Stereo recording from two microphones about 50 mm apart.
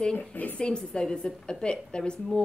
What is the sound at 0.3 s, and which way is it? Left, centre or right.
Speech, left.